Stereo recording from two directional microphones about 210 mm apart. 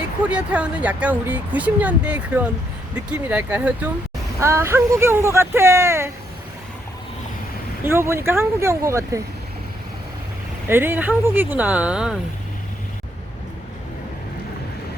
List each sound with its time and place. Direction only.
0.3 s speech: 5° right (ahead or behind)
7.9 s speech: 10° right (ahead or behind)
10.7 s speech: 10° right (ahead or behind)